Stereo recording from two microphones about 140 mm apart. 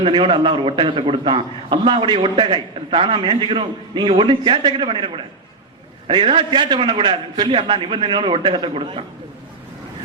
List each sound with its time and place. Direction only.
0.0 s a man's voice: 40° right (ahead or behind)